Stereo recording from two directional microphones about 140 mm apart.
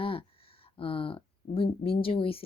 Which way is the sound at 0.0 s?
40° left (ahead or behind).